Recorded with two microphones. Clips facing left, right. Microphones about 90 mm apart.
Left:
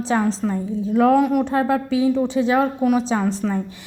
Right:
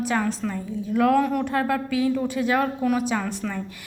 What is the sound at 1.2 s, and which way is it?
A woman's voice, 15° left (ahead or behind).